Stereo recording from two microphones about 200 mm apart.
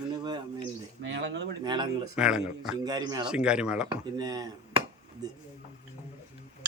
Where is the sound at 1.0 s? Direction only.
60° right (ahead or behind).